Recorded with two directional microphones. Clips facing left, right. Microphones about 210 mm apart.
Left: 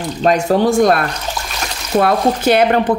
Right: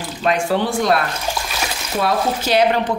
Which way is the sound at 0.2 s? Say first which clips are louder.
Left 5 dB; 40° left (ahead or behind).